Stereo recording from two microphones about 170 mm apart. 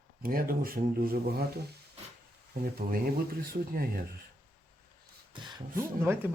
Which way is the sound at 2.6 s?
60° right (ahead or behind).